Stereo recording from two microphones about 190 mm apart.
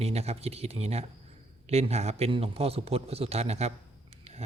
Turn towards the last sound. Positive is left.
turn(degrees=-35)  # may be behind; listen again after turning